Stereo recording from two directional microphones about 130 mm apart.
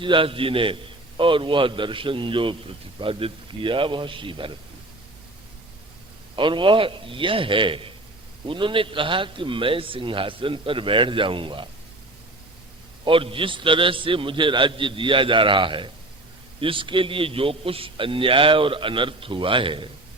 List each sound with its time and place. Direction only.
0.0 s a man's voice: 40° right (ahead or behind)
6.3 s a man's voice: 40° right (ahead or behind)
13.1 s a man's voice: 45° right (ahead or behind)